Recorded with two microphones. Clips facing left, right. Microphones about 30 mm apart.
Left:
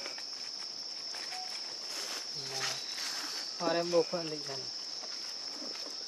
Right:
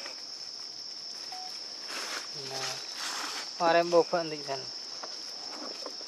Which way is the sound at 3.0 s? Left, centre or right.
Right.